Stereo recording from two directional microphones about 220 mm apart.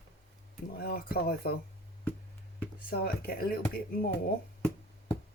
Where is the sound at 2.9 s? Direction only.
45° left (ahead or behind).